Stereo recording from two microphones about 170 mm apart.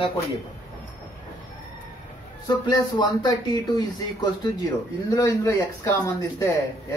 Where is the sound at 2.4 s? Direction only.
25° left (ahead or behind).